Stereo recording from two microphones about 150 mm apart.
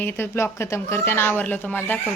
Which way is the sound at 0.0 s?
15° left (ahead or behind).